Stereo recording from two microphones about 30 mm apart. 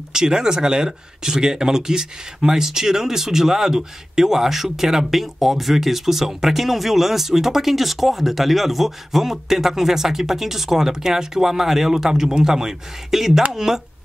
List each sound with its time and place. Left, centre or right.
0.1 s speech: right
12.1 s speech: right